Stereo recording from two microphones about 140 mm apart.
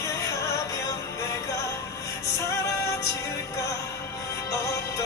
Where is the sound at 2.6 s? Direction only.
25° left (ahead or behind).